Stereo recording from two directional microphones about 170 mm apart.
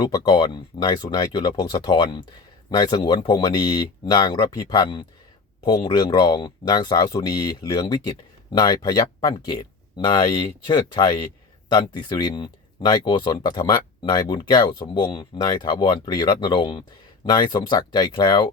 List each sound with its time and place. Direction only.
0.2 s speech: 25° left (ahead or behind)
10.7 s speech: 25° left (ahead or behind)